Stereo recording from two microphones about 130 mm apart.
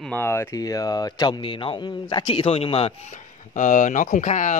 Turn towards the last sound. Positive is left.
turn(degrees=70)  # may be behind; listen again after turning